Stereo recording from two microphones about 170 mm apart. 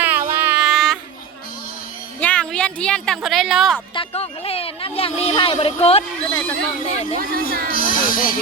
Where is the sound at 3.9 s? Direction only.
35° left (ahead or behind).